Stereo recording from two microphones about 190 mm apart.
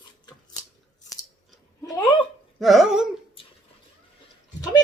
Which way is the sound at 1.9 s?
25° left (ahead or behind).